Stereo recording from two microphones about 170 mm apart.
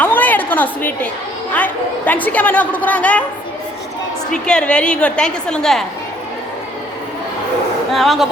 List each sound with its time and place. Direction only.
0.0 s a sound: 10° left (ahead or behind)
1.5 s a woman's voice: 10° left (ahead or behind)
4.3 s a woman's voice: 5° left (ahead or behind)
7.9 s a woman's voice: centre (ahead or behind)